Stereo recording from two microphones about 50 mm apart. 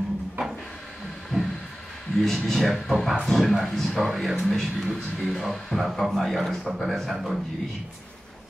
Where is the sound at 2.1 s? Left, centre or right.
Centre.